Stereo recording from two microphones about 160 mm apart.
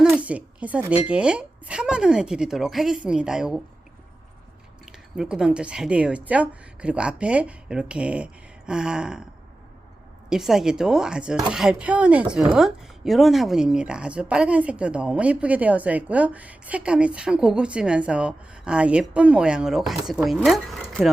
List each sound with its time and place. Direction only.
0.0 s speech: 10° right (ahead or behind)
4.9 s speech: 5° right (ahead or behind)
10.2 s speech: 5° right (ahead or behind)